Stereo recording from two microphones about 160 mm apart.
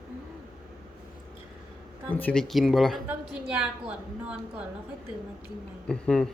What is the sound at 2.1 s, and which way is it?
A woman's voice, 10° left (ahead or behind).